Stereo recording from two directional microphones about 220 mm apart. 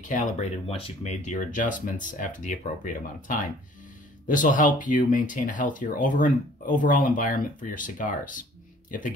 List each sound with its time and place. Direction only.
0.0 s speech: 35° left (ahead or behind)